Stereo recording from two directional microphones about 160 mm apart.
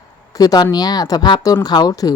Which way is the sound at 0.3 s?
25° left (ahead or behind).